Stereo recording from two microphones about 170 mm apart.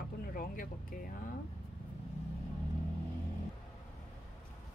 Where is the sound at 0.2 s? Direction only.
55° left (ahead or behind).